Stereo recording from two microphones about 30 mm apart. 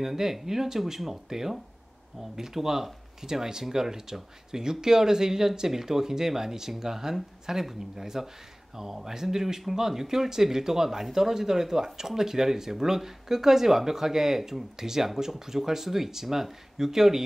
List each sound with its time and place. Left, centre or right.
0.0 s speech: centre